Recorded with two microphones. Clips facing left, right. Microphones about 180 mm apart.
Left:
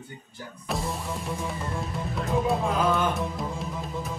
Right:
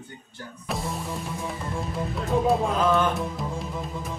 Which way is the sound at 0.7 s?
Centre (ahead or behind).